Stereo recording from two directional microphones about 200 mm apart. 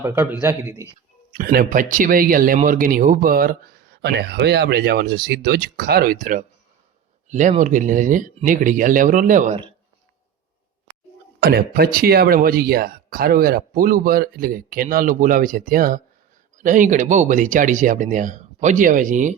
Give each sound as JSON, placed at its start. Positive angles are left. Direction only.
{"t": 0.0, "sound": "a man's voice", "side_deg": -10}
{"t": 1.3, "sound": "speech", "side_deg": -45}
{"t": 11.3, "sound": "speech", "side_deg": -50}